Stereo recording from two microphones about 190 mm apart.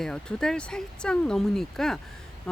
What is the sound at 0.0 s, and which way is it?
Speech, 5° left (ahead or behind).